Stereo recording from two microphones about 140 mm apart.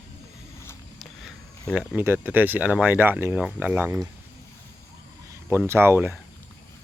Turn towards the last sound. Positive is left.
turn(degrees=-15)  # may be behind; listen again after turning